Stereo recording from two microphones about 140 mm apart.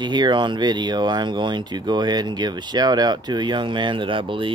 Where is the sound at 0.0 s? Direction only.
30° right (ahead or behind).